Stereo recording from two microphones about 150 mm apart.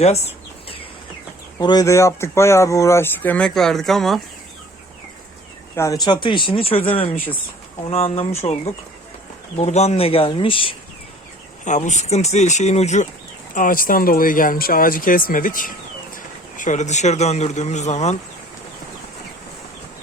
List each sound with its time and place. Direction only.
0.0 s a sound: 45° left (ahead or behind)
1.5 s speech: 25° left (ahead or behind); by 4.2 s centre (ahead or behind)
5.7 s speech: 20° left (ahead or behind)
6.1 s speech: 35° left (ahead or behind)
11.6 s speech: 55° left (ahead or behind)
13.5 s a man's voice: 65° left (ahead or behind); by 18.2 s 50° left (ahead or behind)